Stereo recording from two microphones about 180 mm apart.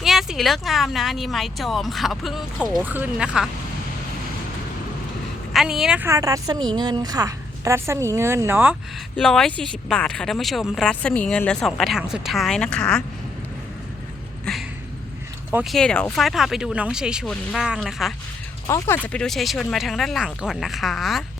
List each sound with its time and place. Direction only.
0.0 s speech: centre (ahead or behind)
5.5 s speech: 5° right (ahead or behind)
6.1 s a woman's voice: 20° right (ahead or behind)
9.1 s speech: centre (ahead or behind)
15.7 s speech: 5° left (ahead or behind)
18.7 s speech: 10° left (ahead or behind)